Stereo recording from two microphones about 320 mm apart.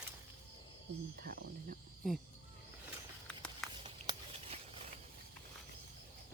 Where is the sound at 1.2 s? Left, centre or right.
Right.